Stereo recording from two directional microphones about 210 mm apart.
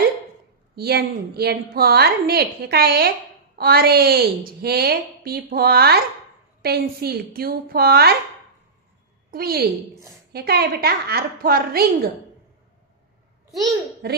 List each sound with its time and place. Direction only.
0.8 s a woman's voice: 50° right (ahead or behind)
9.3 s a woman's voice: 45° right (ahead or behind)
14.0 s a woman's voice: 50° right (ahead or behind)